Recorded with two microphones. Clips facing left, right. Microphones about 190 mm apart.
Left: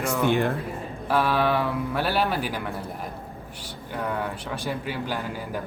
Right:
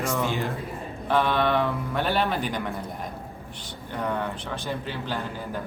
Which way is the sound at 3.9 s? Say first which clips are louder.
Even; 5° left (ahead or behind).